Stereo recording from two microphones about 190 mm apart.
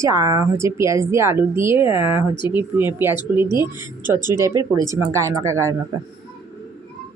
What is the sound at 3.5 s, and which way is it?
Speech, 20° left (ahead or behind).